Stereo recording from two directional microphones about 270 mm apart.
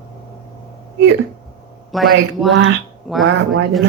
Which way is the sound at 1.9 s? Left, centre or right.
Centre.